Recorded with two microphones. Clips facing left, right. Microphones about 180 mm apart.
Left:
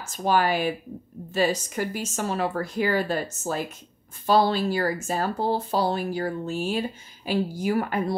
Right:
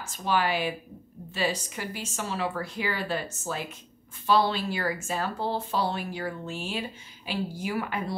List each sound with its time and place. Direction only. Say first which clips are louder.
0.0 s a woman's voice: left 4 dB; 45° left (ahead or behind)